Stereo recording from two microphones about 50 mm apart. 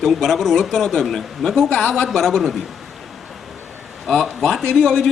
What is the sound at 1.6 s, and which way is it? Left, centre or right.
Speech, centre.